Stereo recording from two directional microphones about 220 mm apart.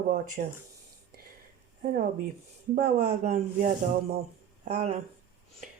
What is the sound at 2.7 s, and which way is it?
Speech, 40° right (ahead or behind).